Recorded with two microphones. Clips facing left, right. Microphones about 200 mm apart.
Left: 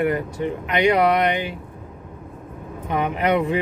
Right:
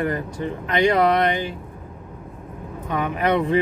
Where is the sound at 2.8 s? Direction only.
25° left (ahead or behind).